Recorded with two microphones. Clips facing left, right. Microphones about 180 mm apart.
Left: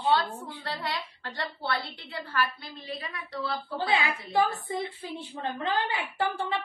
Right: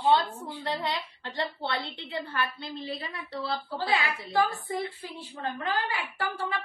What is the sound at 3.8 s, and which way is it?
A woman's voice, 20° left (ahead or behind).